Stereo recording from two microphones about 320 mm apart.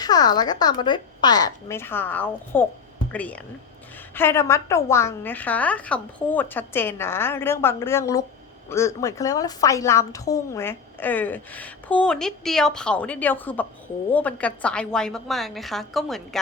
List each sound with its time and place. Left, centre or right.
0.0 s a woman's voice: centre